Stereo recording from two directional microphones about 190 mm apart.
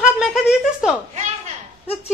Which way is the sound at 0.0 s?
5° right (ahead or behind).